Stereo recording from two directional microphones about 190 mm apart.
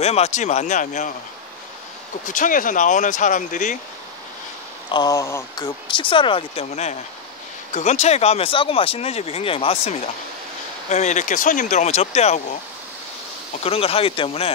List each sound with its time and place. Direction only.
0.0 s speech: 35° left (ahead or behind)
2.2 s speech: 45° left (ahead or behind)
4.9 s speech: 20° left (ahead or behind)
5.9 s speech: 25° left (ahead or behind)
13.6 s speech: 30° left (ahead or behind)